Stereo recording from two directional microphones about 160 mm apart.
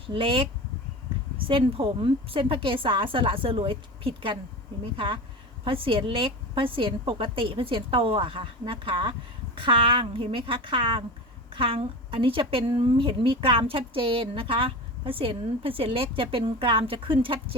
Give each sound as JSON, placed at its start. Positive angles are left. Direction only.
{"t": 0.1, "sound": "a woman's voice", "side_deg": -35}
{"t": 1.5, "sound": "a woman's voice", "side_deg": -35}